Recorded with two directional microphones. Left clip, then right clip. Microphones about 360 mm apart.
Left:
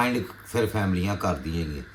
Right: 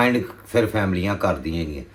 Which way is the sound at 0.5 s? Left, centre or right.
Centre.